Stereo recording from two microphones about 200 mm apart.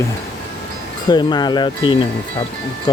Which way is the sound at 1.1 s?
20° left (ahead or behind).